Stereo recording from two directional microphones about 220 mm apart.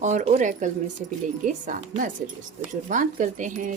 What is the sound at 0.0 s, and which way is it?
Speech, 30° right (ahead or behind).